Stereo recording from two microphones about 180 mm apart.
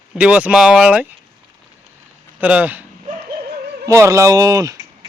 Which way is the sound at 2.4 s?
10° right (ahead or behind).